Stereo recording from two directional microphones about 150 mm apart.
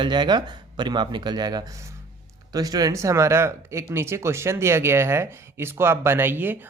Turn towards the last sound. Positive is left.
turn(degrees=-15)  # may be behind; listen again after turning